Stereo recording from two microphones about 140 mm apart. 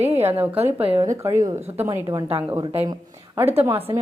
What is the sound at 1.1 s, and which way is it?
Speech, 20° right (ahead or behind).